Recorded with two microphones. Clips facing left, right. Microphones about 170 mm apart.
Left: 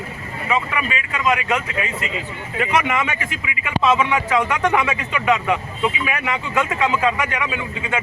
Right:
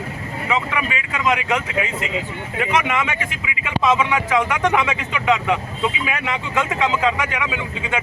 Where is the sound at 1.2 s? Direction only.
15° right (ahead or behind).